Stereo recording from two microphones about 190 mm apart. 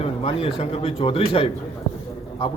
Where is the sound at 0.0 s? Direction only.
30° left (ahead or behind).